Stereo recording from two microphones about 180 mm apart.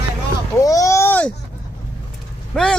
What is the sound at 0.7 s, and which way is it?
Speech, 15° left (ahead or behind).